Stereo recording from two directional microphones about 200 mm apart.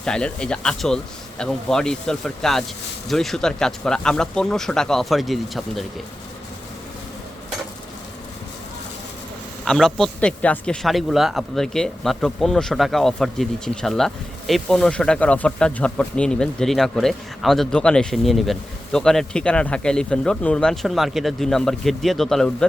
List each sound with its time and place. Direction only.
0.0 s speech: 5° left (ahead or behind)
9.6 s speech: centre (ahead or behind)